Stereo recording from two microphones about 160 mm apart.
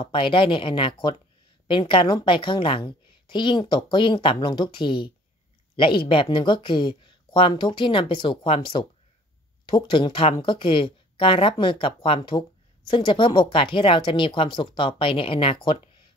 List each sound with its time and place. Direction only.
0.0 s speech: 30° left (ahead or behind)